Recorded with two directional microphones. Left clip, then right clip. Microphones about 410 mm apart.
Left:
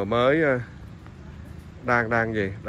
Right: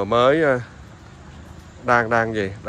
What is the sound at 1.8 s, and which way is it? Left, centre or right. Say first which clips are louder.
Speech: right 5 dB; centre.